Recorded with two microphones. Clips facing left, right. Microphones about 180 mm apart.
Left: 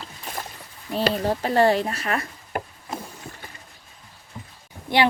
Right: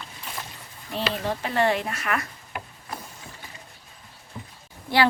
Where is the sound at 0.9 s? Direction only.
40° left (ahead or behind).